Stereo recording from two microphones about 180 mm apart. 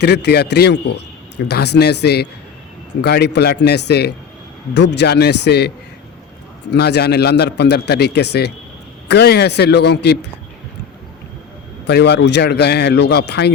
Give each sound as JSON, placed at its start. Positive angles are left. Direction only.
{"t": 0.0, "sound": "a man's voice", "side_deg": 70}
{"t": 11.9, "sound": "a man's voice", "side_deg": 70}